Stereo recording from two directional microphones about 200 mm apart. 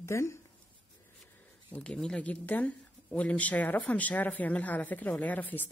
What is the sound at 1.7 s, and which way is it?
Speech, 5° left (ahead or behind).